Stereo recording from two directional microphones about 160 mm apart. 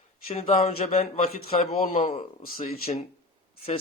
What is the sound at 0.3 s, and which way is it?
A man's voice, 40° left (ahead or behind).